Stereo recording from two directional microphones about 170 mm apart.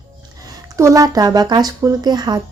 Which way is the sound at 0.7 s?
20° right (ahead or behind).